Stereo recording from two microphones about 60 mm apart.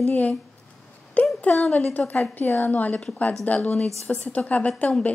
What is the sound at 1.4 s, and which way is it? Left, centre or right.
A woman's voice, left.